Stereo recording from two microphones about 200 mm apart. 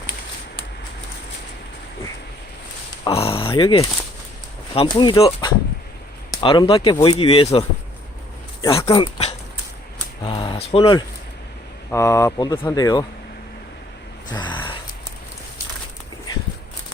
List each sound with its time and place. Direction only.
3.0 s speech: 30° left (ahead or behind)
8.6 s speech: 15° left (ahead or behind)
11.9 s speech: 15° left (ahead or behind)
14.3 s gasp: 20° left (ahead or behind)